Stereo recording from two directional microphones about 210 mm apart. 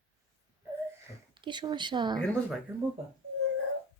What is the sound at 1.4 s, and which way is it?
Speech, 20° right (ahead or behind).